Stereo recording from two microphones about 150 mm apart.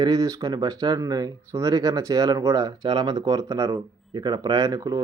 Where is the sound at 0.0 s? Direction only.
25° right (ahead or behind).